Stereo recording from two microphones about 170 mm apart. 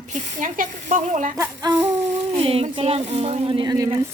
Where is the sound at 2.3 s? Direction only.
35° right (ahead or behind).